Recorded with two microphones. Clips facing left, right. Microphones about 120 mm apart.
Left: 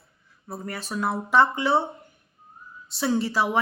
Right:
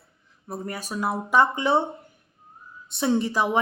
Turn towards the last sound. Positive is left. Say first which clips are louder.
# right 1 dB
turn(degrees=-20)  # may be behind; listen again after turning